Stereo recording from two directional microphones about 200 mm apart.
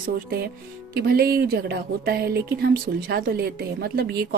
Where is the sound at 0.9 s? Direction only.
50° right (ahead or behind).